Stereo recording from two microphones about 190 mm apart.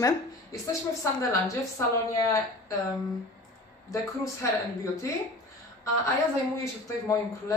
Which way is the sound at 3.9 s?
15° left (ahead or behind).